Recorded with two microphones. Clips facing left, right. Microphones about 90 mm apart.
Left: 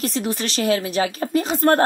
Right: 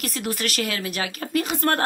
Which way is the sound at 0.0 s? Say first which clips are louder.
Left 4 dB; 25° left (ahead or behind).